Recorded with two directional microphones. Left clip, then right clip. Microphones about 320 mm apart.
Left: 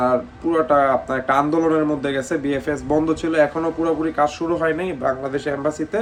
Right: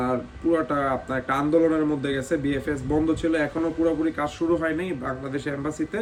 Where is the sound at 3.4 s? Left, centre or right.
Left.